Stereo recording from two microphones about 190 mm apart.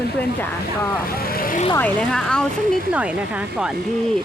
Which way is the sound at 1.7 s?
5° left (ahead or behind).